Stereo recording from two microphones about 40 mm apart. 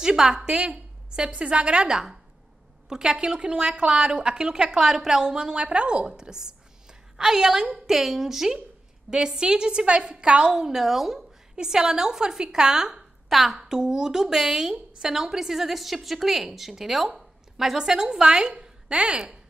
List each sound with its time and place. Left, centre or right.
0.0 s a woman's voice: centre
11.5 s a woman's voice: centre
13.3 s a woman's voice: centre
13.6 s a woman's voice: centre